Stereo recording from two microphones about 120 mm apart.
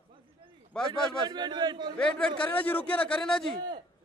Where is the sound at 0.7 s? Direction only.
5° left (ahead or behind).